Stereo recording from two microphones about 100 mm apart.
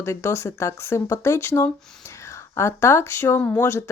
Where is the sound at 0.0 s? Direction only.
30° left (ahead or behind).